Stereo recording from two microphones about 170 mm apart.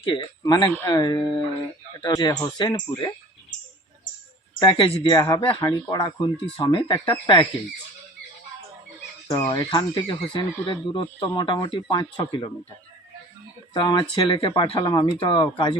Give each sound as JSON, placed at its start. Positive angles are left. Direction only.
{"t": 0.0, "sound": "speech", "side_deg": 30}
{"t": 4.6, "sound": "speech", "side_deg": 30}
{"t": 9.2, "sound": "speech", "side_deg": 20}
{"t": 13.7, "sound": "speech", "side_deg": 30}